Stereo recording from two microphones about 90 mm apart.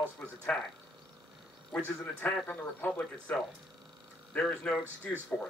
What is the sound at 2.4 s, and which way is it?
Speech, 15° left (ahead or behind).